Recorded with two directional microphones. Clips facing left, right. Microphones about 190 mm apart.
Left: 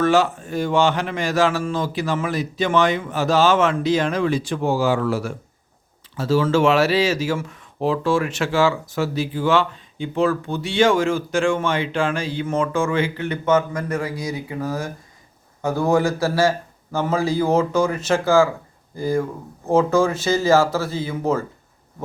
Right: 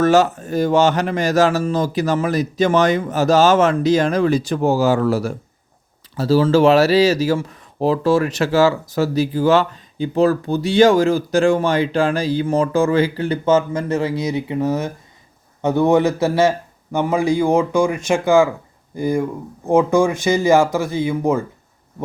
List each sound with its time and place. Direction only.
0.0 s a man's voice: 40° right (ahead or behind); by 21.4 s 15° right (ahead or behind)